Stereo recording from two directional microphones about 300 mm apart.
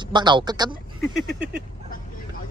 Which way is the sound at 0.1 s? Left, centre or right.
Centre.